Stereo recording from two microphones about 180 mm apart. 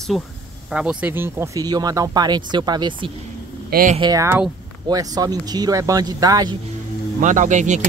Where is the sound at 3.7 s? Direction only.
50° right (ahead or behind).